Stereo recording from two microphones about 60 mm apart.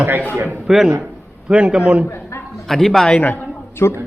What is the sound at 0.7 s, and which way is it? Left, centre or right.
A man's voice, centre.